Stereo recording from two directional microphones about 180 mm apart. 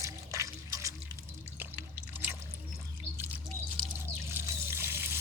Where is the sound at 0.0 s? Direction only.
15° right (ahead or behind).